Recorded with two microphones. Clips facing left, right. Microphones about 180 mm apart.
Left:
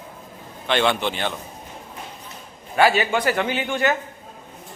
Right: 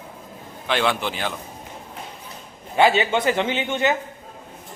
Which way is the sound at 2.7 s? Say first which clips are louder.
Right 1 dB; 20° right (ahead or behind).